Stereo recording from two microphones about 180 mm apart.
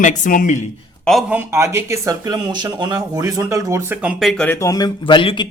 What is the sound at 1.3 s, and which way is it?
Speech, 15° right (ahead or behind).